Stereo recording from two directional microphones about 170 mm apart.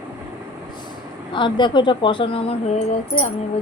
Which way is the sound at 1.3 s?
30° left (ahead or behind).